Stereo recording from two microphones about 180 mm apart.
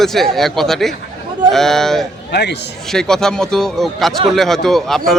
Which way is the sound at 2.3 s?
70° left (ahead or behind).